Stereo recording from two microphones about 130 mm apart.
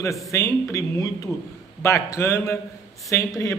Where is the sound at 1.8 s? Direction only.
20° left (ahead or behind).